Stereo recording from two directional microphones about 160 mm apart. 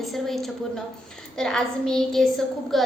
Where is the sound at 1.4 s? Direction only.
5° left (ahead or behind).